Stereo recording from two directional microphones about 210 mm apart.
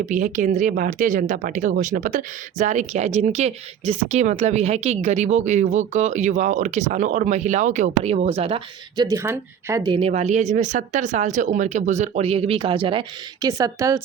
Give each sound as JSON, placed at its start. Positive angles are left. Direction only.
{"t": 0.0, "sound": "speech", "side_deg": -40}
{"t": 9.0, "sound": "a woman's voice", "side_deg": -10}